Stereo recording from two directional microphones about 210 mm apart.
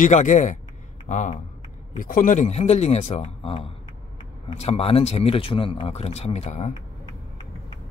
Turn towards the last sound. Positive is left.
turn(degrees=30)  # may be behind; listen again after turning